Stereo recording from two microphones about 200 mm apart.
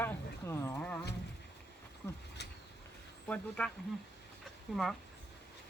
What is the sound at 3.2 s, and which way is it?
Speech, 5° left (ahead or behind).